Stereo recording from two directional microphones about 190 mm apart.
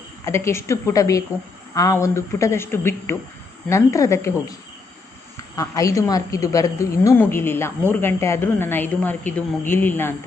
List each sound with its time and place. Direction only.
0.3 s a woman's voice: 15° left (ahead or behind)
5.5 s a woman's voice: 15° left (ahead or behind)